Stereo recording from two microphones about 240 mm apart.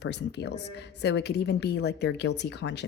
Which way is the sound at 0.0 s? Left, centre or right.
Left.